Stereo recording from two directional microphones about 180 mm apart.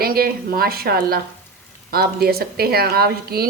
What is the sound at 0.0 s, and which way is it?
A woman's voice, 55° right (ahead or behind).